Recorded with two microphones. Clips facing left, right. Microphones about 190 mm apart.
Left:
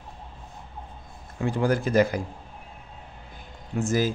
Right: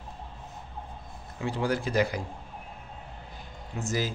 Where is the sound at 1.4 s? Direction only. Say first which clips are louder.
Left 5 dB; 50° left (ahead or behind).